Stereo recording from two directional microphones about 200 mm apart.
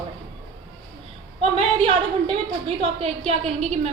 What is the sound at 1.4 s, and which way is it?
A woman's voice, 30° right (ahead or behind).